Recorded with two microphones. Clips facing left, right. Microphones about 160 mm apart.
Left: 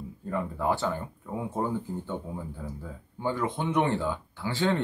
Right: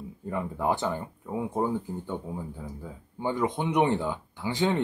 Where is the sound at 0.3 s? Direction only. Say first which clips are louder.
Even; 15° right (ahead or behind).